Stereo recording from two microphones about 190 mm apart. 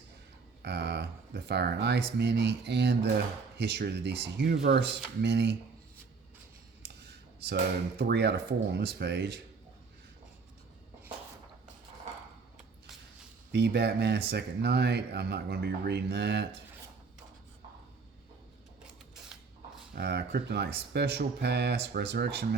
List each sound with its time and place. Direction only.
0.6 s speech: 60° right (ahead or behind)
7.9 s speech: 55° right (ahead or behind)
13.5 s speech: 60° right (ahead or behind)
20.0 s speech: 60° right (ahead or behind)